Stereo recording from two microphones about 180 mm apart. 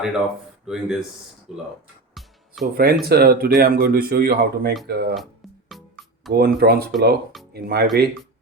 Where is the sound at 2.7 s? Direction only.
55° right (ahead or behind).